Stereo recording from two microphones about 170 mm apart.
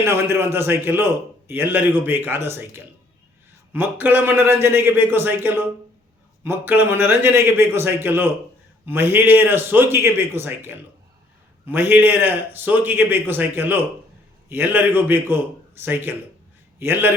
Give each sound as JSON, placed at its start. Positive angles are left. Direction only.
{"t": 0.0, "sound": "a man's voice", "side_deg": -15}